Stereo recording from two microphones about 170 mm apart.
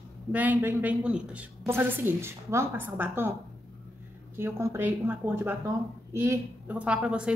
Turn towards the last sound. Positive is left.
turn(degrees=-5)  # may be behind; listen again after turning